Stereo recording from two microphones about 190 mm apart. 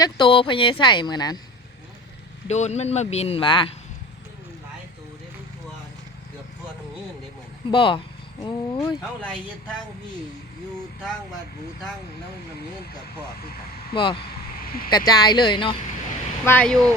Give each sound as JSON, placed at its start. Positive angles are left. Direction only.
{"t": 0.0, "sound": "speech", "side_deg": 25}
{"t": 2.5, "sound": "speech", "side_deg": 35}
{"t": 7.7, "sound": "speech", "side_deg": 25}
{"t": 13.9, "sound": "speech", "side_deg": 25}
{"t": 14.6, "sound": "a sound", "side_deg": 50}
{"t": 14.8, "sound": "speech", "side_deg": 20}
{"t": 16.5, "sound": "speech", "side_deg": 5}